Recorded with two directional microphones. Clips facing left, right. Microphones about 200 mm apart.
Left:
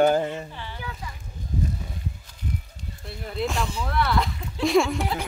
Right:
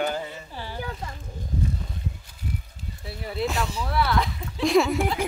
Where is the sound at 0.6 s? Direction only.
40° right (ahead or behind).